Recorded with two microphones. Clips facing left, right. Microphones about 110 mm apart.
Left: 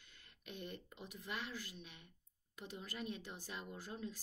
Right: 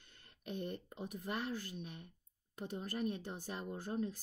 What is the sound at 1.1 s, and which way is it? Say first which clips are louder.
Speech: right 6 dB; 45° right (ahead or behind).